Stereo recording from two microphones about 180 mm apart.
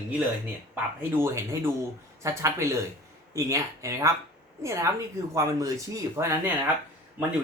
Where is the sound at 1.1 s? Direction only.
15° right (ahead or behind).